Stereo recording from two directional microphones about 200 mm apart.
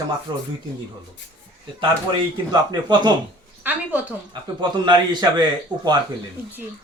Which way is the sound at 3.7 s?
10° right (ahead or behind).